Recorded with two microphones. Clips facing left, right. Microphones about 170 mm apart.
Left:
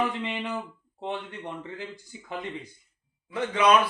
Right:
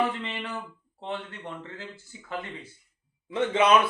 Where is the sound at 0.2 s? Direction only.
15° left (ahead or behind).